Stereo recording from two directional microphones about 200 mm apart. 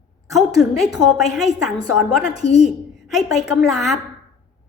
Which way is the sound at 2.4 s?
35° left (ahead or behind).